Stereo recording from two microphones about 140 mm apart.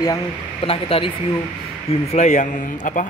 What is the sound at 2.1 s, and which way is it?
Speech, 55° left (ahead or behind).